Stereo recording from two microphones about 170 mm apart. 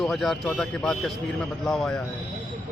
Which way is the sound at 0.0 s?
Centre (ahead or behind).